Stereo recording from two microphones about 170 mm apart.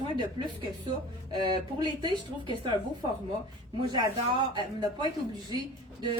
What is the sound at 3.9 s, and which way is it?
Speech, 25° right (ahead or behind).